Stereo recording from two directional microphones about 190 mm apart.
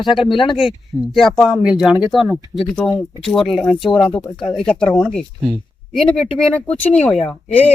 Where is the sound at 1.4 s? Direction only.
Centre (ahead or behind).